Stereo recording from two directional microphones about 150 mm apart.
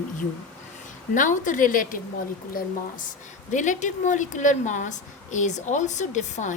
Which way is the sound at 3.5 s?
55° left (ahead or behind).